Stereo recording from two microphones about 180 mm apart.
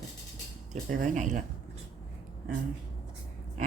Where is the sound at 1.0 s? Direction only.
45° right (ahead or behind).